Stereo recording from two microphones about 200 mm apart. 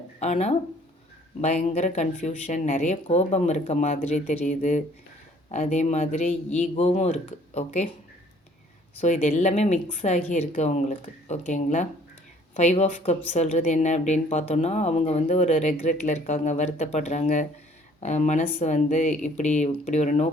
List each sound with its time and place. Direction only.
0.2 s a woman's voice: 35° left (ahead or behind)
9.0 s a woman's voice: 40° left (ahead or behind)